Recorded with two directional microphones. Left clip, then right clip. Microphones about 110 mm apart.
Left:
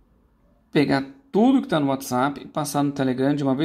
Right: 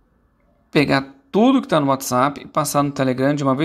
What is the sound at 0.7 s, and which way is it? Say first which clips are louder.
Speech: right 4 dB; 20° right (ahead or behind).